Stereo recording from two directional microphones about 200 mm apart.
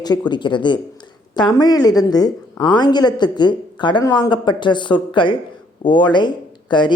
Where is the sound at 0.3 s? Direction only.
25° left (ahead or behind).